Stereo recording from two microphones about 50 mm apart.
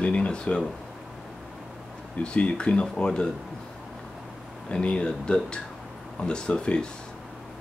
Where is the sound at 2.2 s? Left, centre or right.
Left.